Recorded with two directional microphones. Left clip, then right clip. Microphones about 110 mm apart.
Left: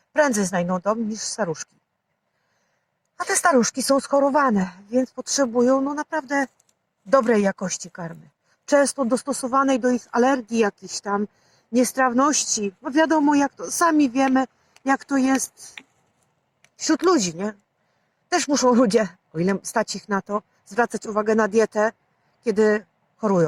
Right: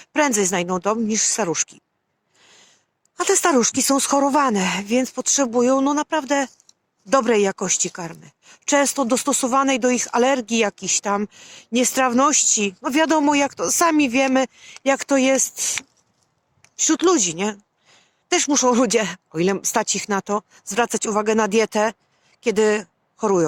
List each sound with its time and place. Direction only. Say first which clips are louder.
0.0 s speech: right 1 dB; 30° right (ahead or behind)
3.6 s speech: right 1 dB; 30° right (ahead or behind)
7.1 s a woman's voice: right 1 dB; 30° right (ahead or behind)